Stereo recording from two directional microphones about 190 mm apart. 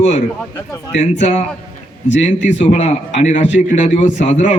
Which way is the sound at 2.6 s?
35° left (ahead or behind).